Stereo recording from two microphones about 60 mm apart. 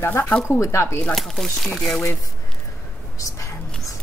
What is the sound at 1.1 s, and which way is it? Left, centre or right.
Speech, centre.